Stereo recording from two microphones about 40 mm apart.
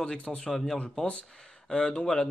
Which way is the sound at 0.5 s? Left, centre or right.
Centre.